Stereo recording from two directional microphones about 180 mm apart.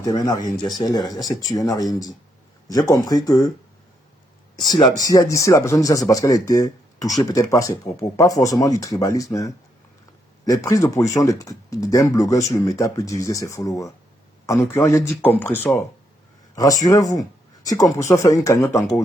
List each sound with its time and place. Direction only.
0.0 s speech: 20° left (ahead or behind)
4.5 s speech: 25° left (ahead or behind)
10.4 s speech: 20° left (ahead or behind)